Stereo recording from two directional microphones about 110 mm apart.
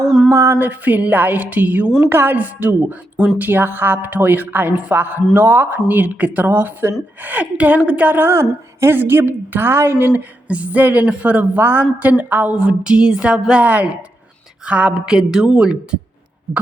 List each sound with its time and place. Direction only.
0.3 s a woman's voice: 25° right (ahead or behind); by 16.0 s 10° right (ahead or behind)